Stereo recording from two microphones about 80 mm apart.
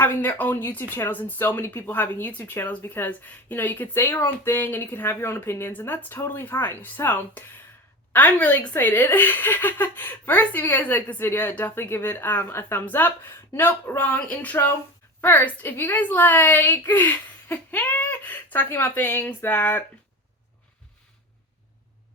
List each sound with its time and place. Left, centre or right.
0.0 s speech: left